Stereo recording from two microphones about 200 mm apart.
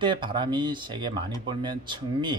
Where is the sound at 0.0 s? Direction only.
25° right (ahead or behind).